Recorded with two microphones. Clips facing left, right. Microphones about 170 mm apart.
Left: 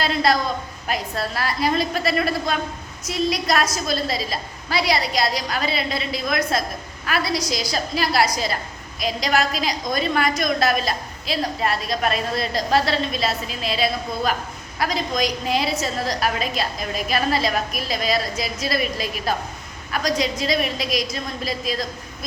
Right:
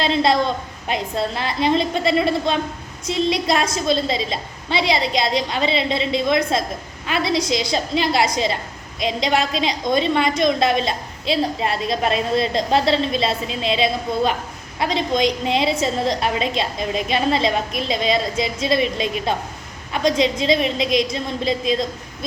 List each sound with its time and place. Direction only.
0.0 s a woman's voice: 25° right (ahead or behind)